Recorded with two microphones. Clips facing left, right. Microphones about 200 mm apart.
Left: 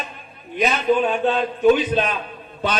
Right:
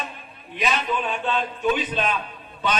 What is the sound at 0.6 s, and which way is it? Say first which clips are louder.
A man's voice: left 7 dB; 45° left (ahead or behind).